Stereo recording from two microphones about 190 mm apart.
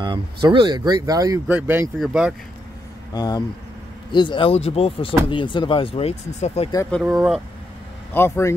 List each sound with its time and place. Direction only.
0.0 s speech: 25° right (ahead or behind); by 2.3 s 5° right (ahead or behind)
3.1 s speech: 20° left (ahead or behind)
6.9 s speech: centre (ahead or behind)
8.1 s speech: 15° left (ahead or behind)